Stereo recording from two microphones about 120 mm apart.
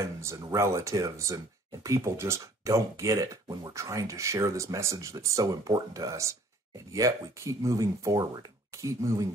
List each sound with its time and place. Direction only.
0.0 s speech: 25° right (ahead or behind)